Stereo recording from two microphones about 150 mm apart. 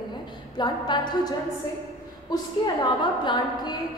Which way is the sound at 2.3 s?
30° left (ahead or behind).